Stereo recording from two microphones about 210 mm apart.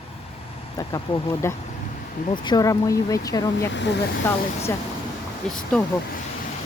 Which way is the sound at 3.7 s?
55° left (ahead or behind).